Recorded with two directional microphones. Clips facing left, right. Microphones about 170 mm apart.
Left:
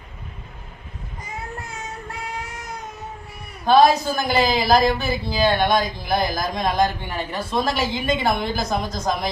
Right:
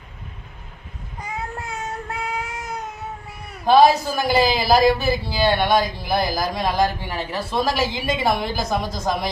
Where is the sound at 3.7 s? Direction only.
5° right (ahead or behind).